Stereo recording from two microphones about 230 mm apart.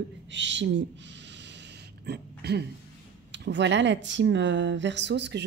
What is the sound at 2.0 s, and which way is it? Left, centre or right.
Speech, right.